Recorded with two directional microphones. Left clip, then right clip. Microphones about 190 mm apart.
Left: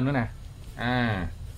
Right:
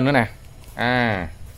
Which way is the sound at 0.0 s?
50° right (ahead or behind).